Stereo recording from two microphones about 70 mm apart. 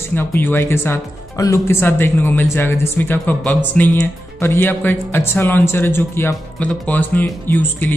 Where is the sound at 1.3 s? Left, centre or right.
Left.